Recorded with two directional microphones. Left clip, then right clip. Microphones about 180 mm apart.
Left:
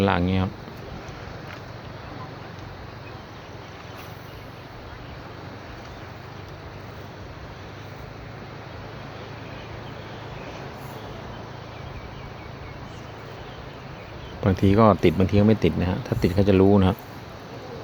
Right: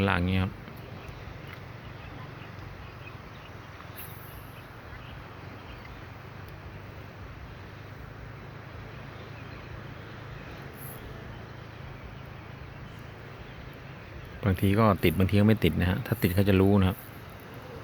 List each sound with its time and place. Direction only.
0.0 s speech: 20° left (ahead or behind)
14.4 s speech: 20° left (ahead or behind)